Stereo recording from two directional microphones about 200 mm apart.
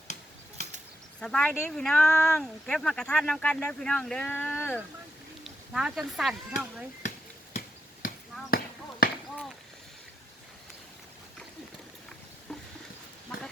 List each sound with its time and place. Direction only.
1.2 s speech: 5° left (ahead or behind)
5.4 s speech: 5° right (ahead or behind)
8.0 s basketball bounce: 50° left (ahead or behind)
12.5 s a sound: 5° left (ahead or behind)